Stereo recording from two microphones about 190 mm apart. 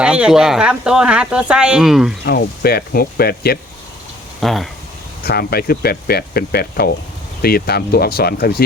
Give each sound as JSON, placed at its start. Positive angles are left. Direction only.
{"t": 0.0, "sound": "speech", "side_deg": -5}
{"t": 2.2, "sound": "speech", "side_deg": 55}
{"t": 4.4, "sound": "speech", "side_deg": 0}
{"t": 5.2, "sound": "speech", "side_deg": 55}